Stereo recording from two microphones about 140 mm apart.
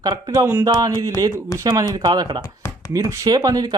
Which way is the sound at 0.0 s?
30° right (ahead or behind).